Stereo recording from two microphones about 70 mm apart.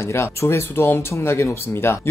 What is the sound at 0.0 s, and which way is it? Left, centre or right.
Speech, left.